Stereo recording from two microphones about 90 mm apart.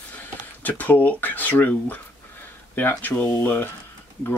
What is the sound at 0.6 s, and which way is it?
Speech, 20° left (ahead or behind).